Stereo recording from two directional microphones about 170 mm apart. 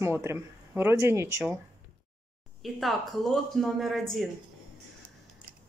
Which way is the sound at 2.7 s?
Centre (ahead or behind).